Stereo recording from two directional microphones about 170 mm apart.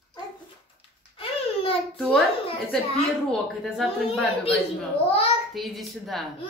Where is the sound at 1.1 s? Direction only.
35° left (ahead or behind).